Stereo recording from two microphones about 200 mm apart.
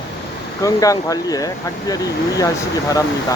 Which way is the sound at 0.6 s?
15° left (ahead or behind).